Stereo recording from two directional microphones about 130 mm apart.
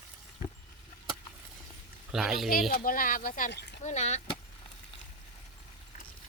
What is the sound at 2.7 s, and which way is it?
Speech, 90° left.